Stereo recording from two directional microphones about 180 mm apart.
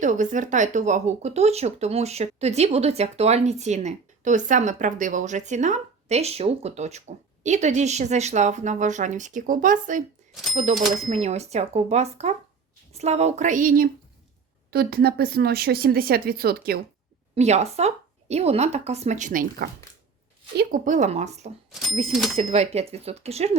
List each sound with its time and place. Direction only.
0.0 s speech: 45° right (ahead or behind)
17.3 s speech: 40° right (ahead or behind)
21.7 s speech: centre (ahead or behind)
22.4 s speech: 35° right (ahead or behind)